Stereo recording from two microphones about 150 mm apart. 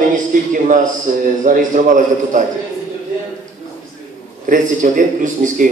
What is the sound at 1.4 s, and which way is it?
A man's voice, 60° right (ahead or behind).